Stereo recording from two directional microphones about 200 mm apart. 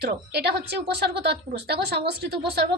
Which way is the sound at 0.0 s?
55° right (ahead or behind).